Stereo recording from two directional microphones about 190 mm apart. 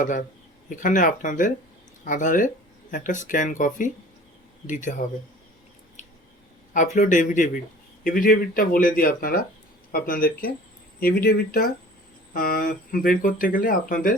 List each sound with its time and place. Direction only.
0.0 s speech: 45° left (ahead or behind)
6.7 s speech: 45° left (ahead or behind)